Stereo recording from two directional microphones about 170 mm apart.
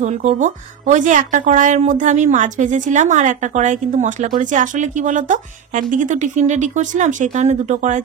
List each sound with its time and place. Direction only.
0.0 s speech: 45° right (ahead or behind)